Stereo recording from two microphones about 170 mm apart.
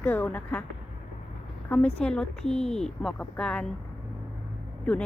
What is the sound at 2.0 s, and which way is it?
Speech, 5° left (ahead or behind).